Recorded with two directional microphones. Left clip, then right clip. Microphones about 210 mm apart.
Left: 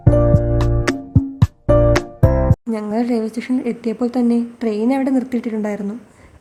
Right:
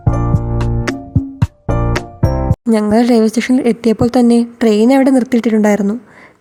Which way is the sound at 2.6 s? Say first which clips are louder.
Right 9 dB; 35° right (ahead or behind).